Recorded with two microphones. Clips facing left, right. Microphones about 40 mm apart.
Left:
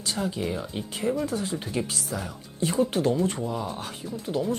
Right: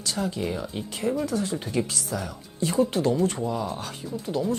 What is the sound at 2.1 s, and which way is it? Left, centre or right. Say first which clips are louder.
Speech: right 3 dB; centre.